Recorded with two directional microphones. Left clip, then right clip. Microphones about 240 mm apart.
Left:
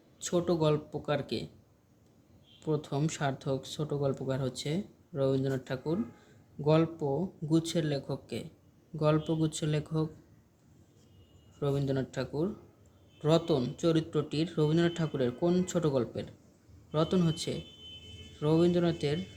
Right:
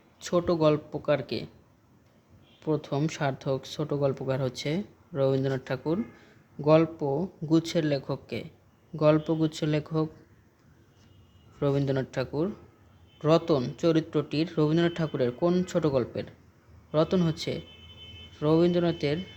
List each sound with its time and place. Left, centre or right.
0.2 s speech: right
2.6 s speech: centre
11.6 s speech: right